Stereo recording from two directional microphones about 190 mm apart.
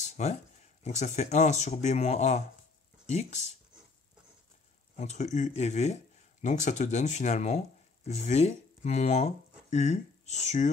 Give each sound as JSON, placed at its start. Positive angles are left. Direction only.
{"t": 0.0, "sound": "a sound", "side_deg": 40}
{"t": 0.8, "sound": "speech", "side_deg": 35}
{"t": 4.9, "sound": "speech", "side_deg": 35}